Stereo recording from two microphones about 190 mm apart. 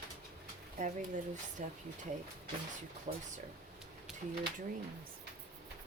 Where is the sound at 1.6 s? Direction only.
40° right (ahead or behind).